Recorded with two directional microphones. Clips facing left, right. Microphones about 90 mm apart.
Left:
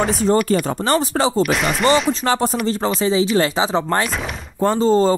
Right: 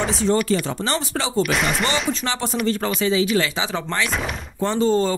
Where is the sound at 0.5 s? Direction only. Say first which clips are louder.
Left 4 dB; 45° left (ahead or behind).